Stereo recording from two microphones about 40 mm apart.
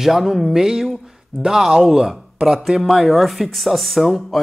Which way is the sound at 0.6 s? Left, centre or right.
Centre.